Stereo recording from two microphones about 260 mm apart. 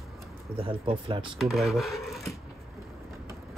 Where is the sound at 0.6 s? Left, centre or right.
Right.